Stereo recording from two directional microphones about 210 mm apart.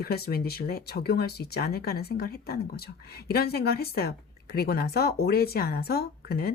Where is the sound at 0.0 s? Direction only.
45° left (ahead or behind).